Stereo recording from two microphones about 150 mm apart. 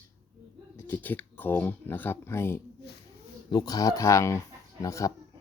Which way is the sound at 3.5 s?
25° left (ahead or behind).